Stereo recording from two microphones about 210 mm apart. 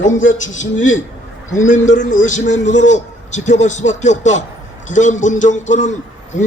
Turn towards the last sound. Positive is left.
turn(degrees=35)  # may be behind; listen again after turning